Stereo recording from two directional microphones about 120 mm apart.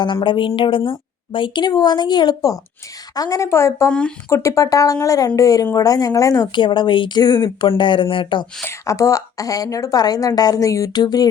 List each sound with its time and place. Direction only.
0.0 s a woman's voice: 40° left (ahead or behind)
6.5 s a woman's voice: 40° left (ahead or behind)
8.6 s a woman's voice: 25° left (ahead or behind)